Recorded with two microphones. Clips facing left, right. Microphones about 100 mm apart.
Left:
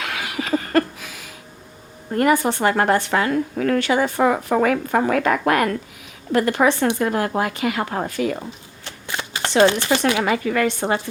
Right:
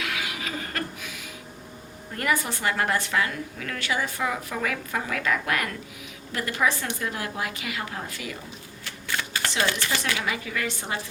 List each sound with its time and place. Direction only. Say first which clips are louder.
0.0 s a sound: left 5 dB; 45° left (ahead or behind)
2.1 s speech: left 10 dB; 40° left (ahead or behind)
8.8 s shuffling cards: left 2 dB; 25° left (ahead or behind)
9.9 s speech: left 10 dB; 65° left (ahead or behind)
10.2 s speech: left 10 dB; 45° left (ahead or behind)